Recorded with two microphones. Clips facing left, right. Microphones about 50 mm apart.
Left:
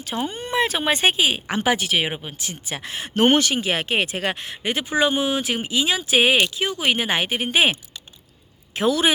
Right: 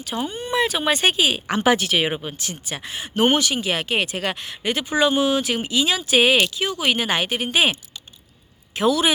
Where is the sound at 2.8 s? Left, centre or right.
Left.